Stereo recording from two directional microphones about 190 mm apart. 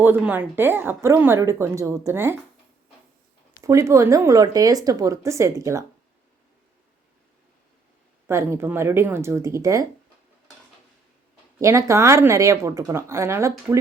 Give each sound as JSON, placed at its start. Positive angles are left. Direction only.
{"t": 0.0, "sound": "a woman's voice", "side_deg": -10}
{"t": 3.6, "sound": "a woman's voice", "side_deg": -15}
{"t": 8.3, "sound": "a woman's voice", "side_deg": -15}
{"t": 11.6, "sound": "a woman's voice", "side_deg": -15}